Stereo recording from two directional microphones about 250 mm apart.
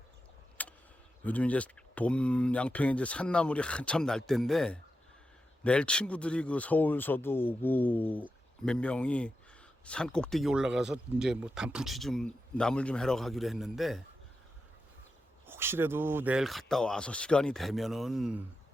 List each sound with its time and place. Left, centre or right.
0.6 s vehicle: centre
1.2 s speech: centre
15.4 s speech: centre